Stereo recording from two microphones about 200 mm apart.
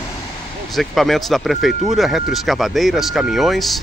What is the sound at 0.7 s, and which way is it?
Speech, centre (ahead or behind).